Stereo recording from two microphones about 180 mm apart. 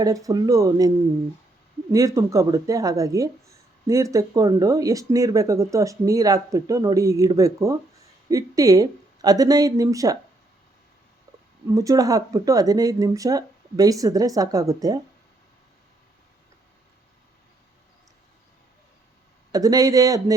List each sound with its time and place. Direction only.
0.0 s speech: 20° right (ahead or behind)
11.7 s speech: 20° right (ahead or behind)
19.5 s speech: 20° right (ahead or behind)